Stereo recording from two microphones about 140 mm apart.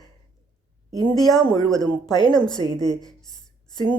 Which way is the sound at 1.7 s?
30° left (ahead or behind).